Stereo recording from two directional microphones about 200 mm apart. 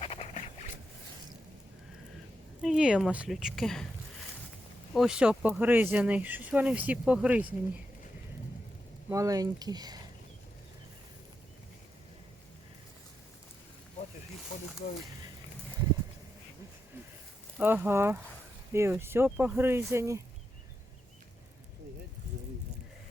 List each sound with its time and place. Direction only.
0.0 s boat: 30° left (ahead or behind)
2.6 s speech: 5° right (ahead or behind)
4.9 s speech: 5° right (ahead or behind)
9.0 s speech: 15° right (ahead or behind)
17.6 s speech: 10° right (ahead or behind)